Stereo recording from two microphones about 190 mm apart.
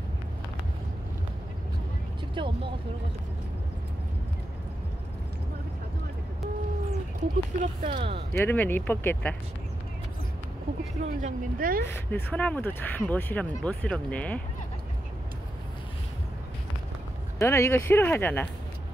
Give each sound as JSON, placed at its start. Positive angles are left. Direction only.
{"t": 2.3, "sound": "speech", "side_deg": -25}
{"t": 7.6, "sound": "speech", "side_deg": -40}
{"t": 8.3, "sound": "speech", "side_deg": 10}
{"t": 11.0, "sound": "speech", "side_deg": -40}
{"t": 11.8, "sound": "speech", "side_deg": 10}
{"t": 17.4, "sound": "speech", "side_deg": 15}